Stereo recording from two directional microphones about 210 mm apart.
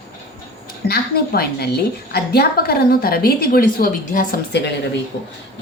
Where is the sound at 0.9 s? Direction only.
50° left (ahead or behind).